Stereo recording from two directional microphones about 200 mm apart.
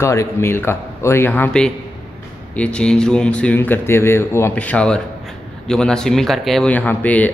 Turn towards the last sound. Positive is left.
turn(degrees=10)  # may be behind; listen again after turning